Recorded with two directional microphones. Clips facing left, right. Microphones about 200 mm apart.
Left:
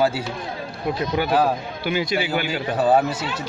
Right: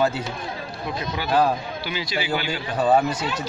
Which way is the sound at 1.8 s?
55° left (ahead or behind).